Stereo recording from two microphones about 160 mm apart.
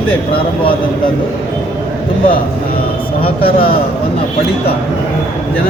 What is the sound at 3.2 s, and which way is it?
Speech, 35° left (ahead or behind).